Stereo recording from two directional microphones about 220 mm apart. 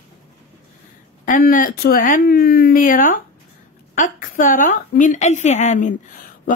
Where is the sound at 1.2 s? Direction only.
40° left (ahead or behind).